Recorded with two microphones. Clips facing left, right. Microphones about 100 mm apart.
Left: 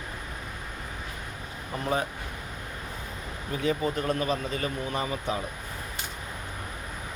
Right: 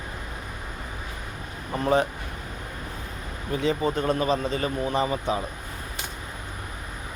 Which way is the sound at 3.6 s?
30° right (ahead or behind).